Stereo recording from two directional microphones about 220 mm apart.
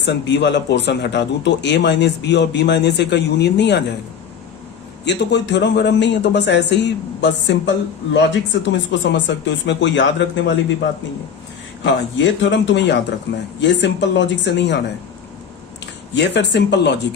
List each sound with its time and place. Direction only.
0.0 s a man's voice: 50° left (ahead or behind)
5.0 s a man's voice: 50° left (ahead or behind)
11.8 s a man's voice: 55° left (ahead or behind)
16.1 s a man's voice: 50° left (ahead or behind)